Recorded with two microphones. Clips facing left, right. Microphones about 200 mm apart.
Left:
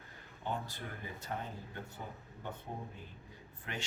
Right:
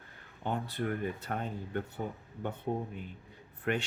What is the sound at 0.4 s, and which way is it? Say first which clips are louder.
Speech: right 7 dB; 60° right (ahead or behind).